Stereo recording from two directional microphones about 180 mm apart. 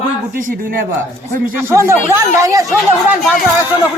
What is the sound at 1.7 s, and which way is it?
Speech, 15° right (ahead or behind).